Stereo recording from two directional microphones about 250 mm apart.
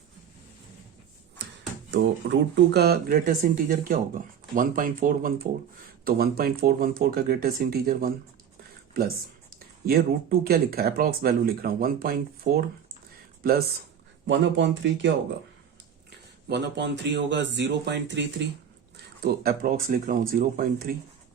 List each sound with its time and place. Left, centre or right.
1.9 s speech: right
14.3 s speech: right
16.5 s speech: right